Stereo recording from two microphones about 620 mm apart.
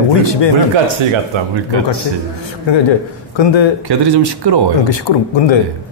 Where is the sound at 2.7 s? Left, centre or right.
Left.